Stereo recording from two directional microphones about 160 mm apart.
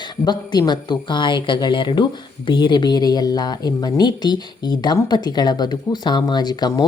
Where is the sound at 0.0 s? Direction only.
25° left (ahead or behind).